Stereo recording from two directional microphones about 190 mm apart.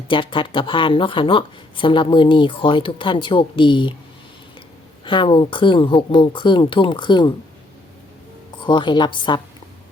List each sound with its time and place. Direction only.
0.1 s speech: 25° left (ahead or behind)
5.0 s speech: 25° left (ahead or behind)
8.5 s speech: 25° left (ahead or behind)